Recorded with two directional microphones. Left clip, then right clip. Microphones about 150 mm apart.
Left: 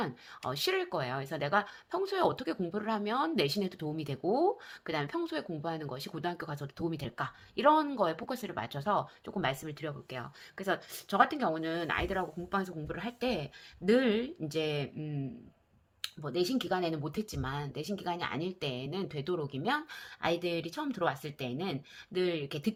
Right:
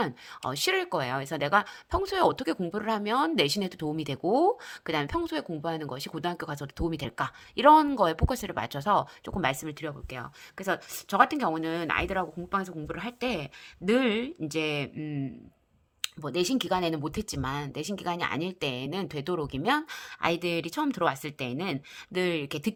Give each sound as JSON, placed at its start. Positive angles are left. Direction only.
{"t": 0.0, "sound": "a woman's voice", "side_deg": -35}
{"t": 12.5, "sound": "a woman's voice", "side_deg": -30}